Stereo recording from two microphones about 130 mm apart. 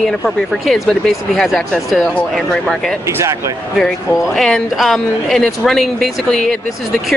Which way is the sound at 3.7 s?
5° left (ahead or behind).